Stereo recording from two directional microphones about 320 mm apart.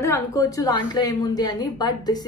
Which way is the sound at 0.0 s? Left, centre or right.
Centre.